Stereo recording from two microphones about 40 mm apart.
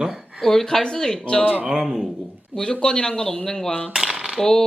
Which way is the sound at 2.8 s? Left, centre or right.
Left.